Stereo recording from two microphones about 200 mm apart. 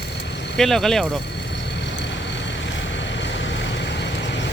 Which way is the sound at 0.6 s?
Centre (ahead or behind).